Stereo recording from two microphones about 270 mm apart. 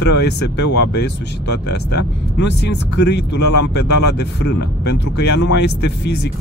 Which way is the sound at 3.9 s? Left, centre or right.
Left.